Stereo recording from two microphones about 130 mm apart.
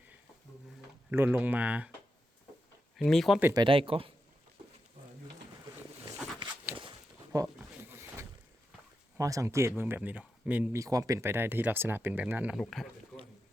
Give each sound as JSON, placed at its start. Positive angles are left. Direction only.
{"t": 1.1, "sound": "speech", "side_deg": -15}
{"t": 3.0, "sound": "speech", "side_deg": 5}
{"t": 3.5, "sound": "speech", "side_deg": -40}
{"t": 7.3, "sound": "speech", "side_deg": -30}
{"t": 7.9, "sound": "vehicle", "side_deg": -20}
{"t": 9.1, "sound": "speech", "side_deg": -25}
{"t": 10.8, "sound": "speech", "side_deg": -25}
{"t": 12.5, "sound": "speech", "side_deg": 0}